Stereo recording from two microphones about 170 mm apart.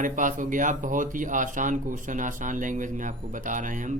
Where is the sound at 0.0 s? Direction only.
50° right (ahead or behind).